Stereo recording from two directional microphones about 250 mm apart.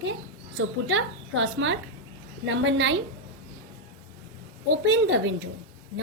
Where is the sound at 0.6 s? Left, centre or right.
Right.